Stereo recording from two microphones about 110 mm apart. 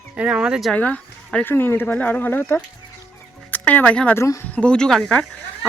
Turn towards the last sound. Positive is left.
turn(degrees=10)  # may be behind; listen again after turning